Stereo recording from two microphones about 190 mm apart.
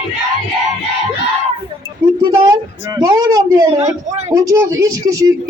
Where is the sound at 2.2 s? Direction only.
20° right (ahead or behind).